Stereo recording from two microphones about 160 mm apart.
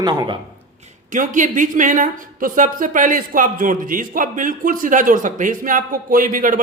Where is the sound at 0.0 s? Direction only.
25° right (ahead or behind).